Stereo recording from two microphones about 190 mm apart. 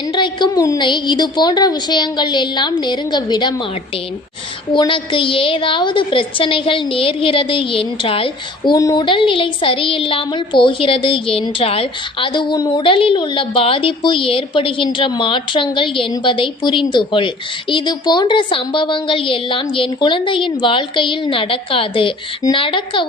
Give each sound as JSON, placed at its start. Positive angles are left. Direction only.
{"t": 0.1, "sound": "a woman's voice", "side_deg": 25}
{"t": 4.7, "sound": "a woman's voice", "side_deg": 25}